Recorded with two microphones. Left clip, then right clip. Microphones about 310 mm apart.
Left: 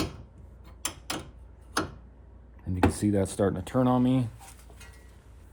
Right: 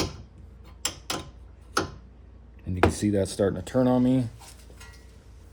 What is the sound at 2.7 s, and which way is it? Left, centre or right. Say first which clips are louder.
Speech: right 3 dB; centre.